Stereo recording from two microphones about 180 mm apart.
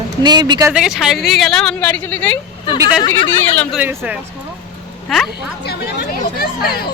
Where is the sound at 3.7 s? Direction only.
10° right (ahead or behind).